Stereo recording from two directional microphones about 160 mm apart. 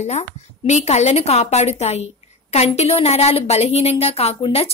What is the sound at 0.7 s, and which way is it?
A woman's voice, 45° left (ahead or behind).